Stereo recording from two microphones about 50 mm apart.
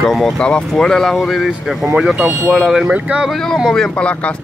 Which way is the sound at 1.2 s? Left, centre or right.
Centre.